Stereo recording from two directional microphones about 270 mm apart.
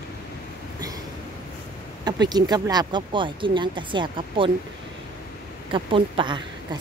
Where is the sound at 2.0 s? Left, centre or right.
Centre.